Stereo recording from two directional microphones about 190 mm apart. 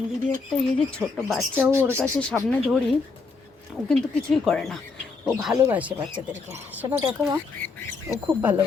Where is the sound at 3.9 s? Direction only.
Centre (ahead or behind).